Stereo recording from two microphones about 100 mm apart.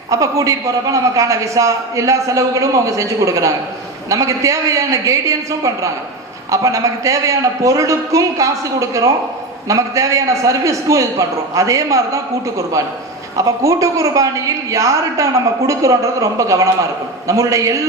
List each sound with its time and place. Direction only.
0.1 s a man's voice: 35° right (ahead or behind)